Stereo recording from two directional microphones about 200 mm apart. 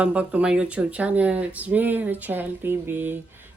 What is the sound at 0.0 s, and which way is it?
Speech, 5° right (ahead or behind).